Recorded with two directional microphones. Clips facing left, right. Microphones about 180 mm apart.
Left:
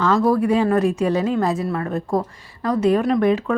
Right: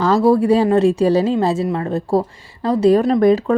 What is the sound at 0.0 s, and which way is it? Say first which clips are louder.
Speech: right 4 dB; 30° right (ahead or behind).